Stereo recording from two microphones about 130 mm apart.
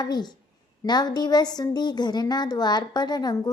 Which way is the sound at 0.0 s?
35° left (ahead or behind).